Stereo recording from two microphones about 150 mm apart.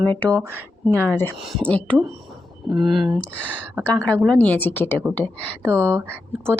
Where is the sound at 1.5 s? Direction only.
5° left (ahead or behind).